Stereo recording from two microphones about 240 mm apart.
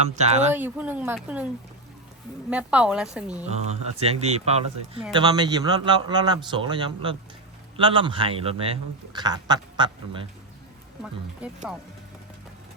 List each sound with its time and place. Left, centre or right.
0.0 s speech: right
0.5 s speech: centre
2.5 s a woman's voice: centre
3.6 s speech: right